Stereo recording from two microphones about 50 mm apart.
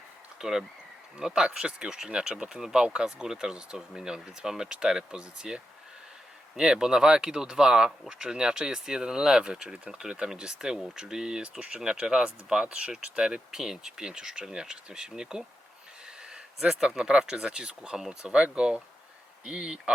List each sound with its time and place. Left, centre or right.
0.3 s speech: centre